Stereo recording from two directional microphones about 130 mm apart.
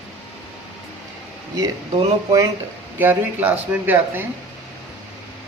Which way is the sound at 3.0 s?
15° right (ahead or behind).